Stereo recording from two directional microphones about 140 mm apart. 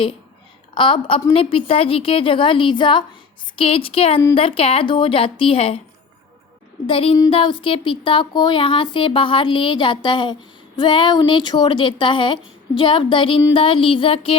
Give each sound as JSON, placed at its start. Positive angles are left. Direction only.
{"t": 0.7, "sound": "speech", "side_deg": 35}
{"t": 6.8, "sound": "speech", "side_deg": 40}